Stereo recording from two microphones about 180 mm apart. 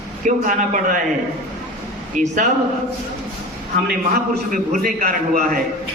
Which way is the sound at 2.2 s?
45° right (ahead or behind).